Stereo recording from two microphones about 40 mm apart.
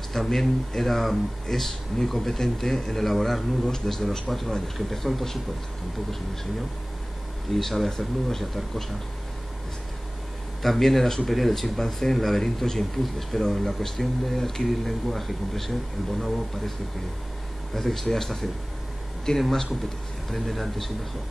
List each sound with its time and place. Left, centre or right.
0.1 s speech: centre
7.5 s speech: centre
10.6 s speech: centre
17.7 s speech: centre
20.2 s speech: centre